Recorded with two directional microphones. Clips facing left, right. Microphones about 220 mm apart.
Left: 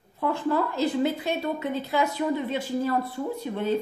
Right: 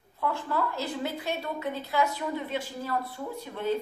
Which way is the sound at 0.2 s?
20° left (ahead or behind).